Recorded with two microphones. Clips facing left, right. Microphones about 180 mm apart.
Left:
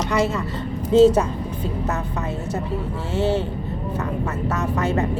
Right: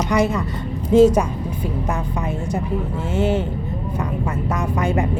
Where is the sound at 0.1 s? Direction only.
15° right (ahead or behind).